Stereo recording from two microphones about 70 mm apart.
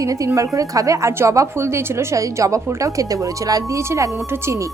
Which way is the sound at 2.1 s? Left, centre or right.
Right.